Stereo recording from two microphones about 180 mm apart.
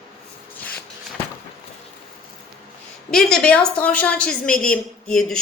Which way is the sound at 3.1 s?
Centre (ahead or behind).